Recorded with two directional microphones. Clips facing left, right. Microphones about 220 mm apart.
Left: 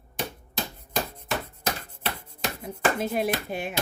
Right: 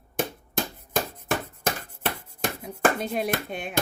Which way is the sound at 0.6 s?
50° right (ahead or behind).